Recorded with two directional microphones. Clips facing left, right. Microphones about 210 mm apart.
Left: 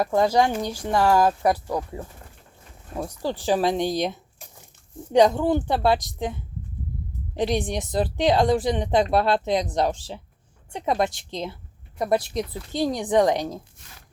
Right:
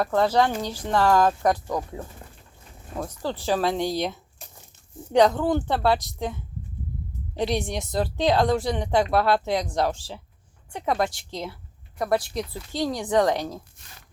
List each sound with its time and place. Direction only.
0.0 s speech: 10° left (ahead or behind)
7.3 s a woman's voice: 15° left (ahead or behind)